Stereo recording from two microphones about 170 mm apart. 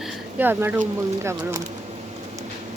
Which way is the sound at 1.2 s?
15° right (ahead or behind).